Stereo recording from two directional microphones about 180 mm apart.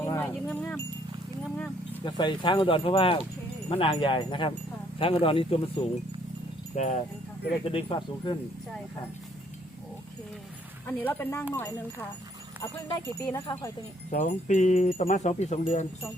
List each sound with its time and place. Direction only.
0.0 s livestock: 10° left (ahead or behind)
1.5 s a sound: 10° left (ahead or behind)
2.0 s speech: 25° left (ahead or behind)
10.8 s speech: 10° left (ahead or behind)
12.6 s speech: 15° left (ahead or behind)
14.1 s speech: 45° left (ahead or behind)